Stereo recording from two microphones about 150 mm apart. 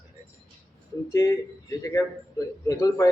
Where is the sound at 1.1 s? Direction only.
20° left (ahead or behind).